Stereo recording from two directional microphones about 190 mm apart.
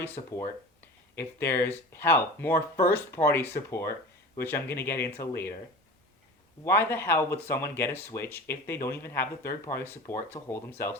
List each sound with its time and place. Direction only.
0.0 s speech: 15° left (ahead or behind)
6.7 s speech: 10° left (ahead or behind)